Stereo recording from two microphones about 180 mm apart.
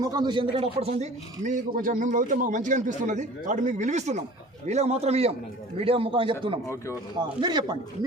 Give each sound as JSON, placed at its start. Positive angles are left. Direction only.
{"t": 0.0, "sound": "a man's voice", "side_deg": -20}
{"t": 7.4, "sound": "a man's voice", "side_deg": -25}